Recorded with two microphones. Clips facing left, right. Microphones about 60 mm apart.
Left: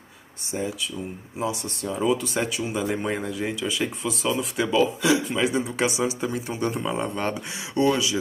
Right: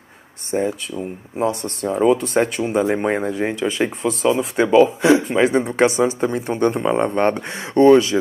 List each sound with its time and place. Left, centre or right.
0.5 s speech: right